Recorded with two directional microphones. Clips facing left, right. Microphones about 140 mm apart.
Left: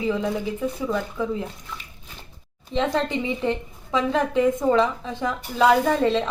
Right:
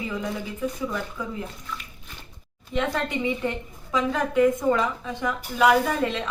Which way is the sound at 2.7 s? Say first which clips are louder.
Left 3 dB; 25° left (ahead or behind).